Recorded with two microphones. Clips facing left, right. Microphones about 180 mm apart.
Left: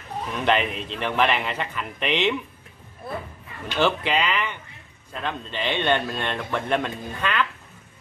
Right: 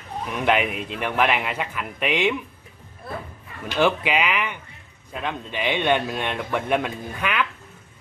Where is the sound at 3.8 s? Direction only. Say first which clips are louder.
Right 1 dB; 10° right (ahead or behind).